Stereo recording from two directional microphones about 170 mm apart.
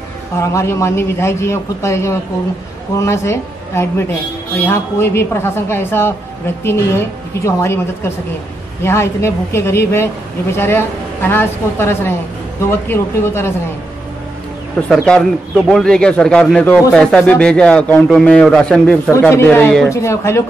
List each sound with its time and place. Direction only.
0.4 s a man's voice: 15° left (ahead or behind)
14.9 s a man's voice: 5° left (ahead or behind)